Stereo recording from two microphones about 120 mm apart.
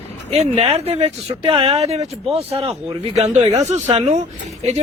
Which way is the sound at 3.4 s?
30° right (ahead or behind).